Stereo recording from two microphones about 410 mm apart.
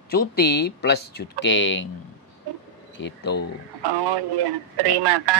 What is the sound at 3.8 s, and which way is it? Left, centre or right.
Speech, right.